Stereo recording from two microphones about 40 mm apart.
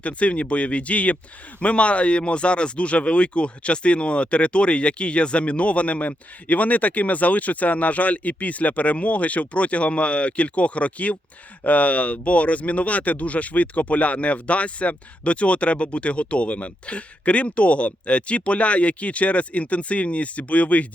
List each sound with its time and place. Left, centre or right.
0.0 s speech: left